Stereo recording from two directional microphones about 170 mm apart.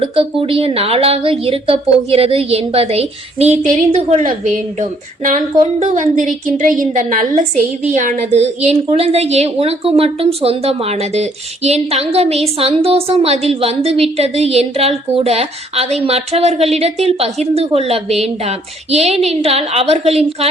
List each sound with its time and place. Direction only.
0.0 s a woman's voice: 30° right (ahead or behind)
4.8 s a sound: 50° right (ahead or behind)
5.8 s a woman's voice: 50° right (ahead or behind)